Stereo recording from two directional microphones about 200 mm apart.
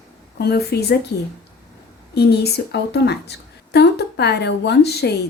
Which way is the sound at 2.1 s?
55° left (ahead or behind).